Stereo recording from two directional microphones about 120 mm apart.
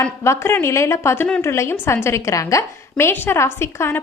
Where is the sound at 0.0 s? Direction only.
20° left (ahead or behind).